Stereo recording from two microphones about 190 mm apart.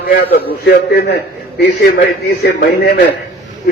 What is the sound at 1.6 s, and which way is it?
A man's voice, 55° left (ahead or behind).